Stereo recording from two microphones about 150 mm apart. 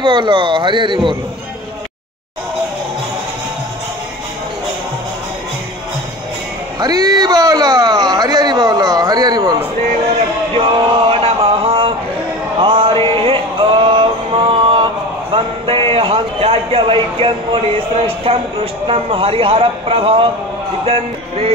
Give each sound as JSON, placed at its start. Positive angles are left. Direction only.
{"t": 0.0, "sound": "speech", "side_deg": -30}
{"t": 6.8, "sound": "speech", "side_deg": -25}
{"t": 10.1, "sound": "a sound", "side_deg": -40}
{"t": 12.5, "sound": "male singing", "side_deg": -35}
{"t": 15.3, "sound": "a sound", "side_deg": -35}
{"t": 15.9, "sound": "speech", "side_deg": -40}